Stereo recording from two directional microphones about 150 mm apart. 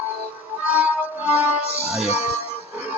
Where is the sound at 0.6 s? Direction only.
10° right (ahead or behind).